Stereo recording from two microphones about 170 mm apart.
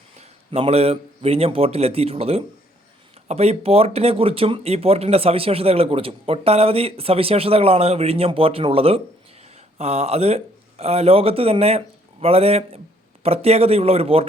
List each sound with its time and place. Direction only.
0.2 s a man's voice: 35° right (ahead or behind)